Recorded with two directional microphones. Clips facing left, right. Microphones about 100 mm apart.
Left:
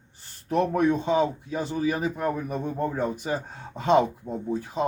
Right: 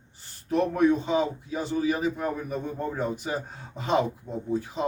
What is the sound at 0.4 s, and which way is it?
Speech, 50° left (ahead or behind).